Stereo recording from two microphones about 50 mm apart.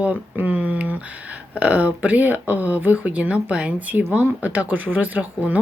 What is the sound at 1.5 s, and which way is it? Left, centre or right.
Speech, right.